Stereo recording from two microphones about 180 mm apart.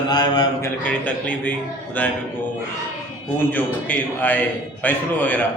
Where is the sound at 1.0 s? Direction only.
10° left (ahead or behind).